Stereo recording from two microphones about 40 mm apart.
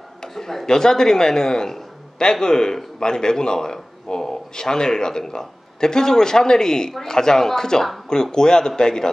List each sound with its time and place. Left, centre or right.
0.2 s a man's voice: centre